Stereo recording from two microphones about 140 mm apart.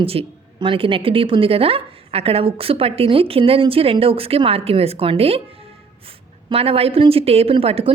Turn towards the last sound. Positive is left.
turn(degrees=-45)  # may be behind; listen again after turning